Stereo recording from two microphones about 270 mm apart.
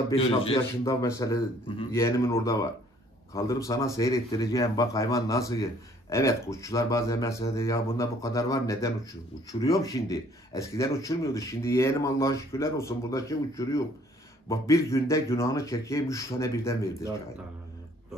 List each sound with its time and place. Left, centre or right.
0.1 s speech: left